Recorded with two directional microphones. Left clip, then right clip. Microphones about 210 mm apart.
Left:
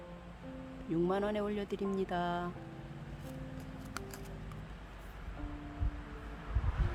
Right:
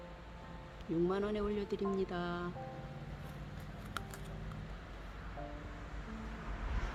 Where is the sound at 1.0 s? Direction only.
25° left (ahead or behind).